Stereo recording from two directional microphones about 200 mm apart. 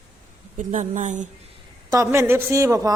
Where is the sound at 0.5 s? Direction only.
35° right (ahead or behind).